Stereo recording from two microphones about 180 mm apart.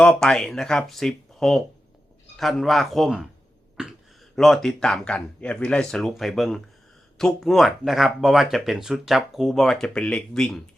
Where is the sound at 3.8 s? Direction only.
5° right (ahead or behind).